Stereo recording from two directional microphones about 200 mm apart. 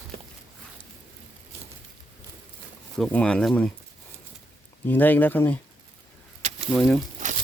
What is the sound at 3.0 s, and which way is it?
Speech, 5° left (ahead or behind).